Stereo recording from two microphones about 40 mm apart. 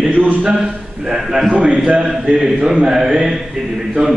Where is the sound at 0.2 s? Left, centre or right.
Right.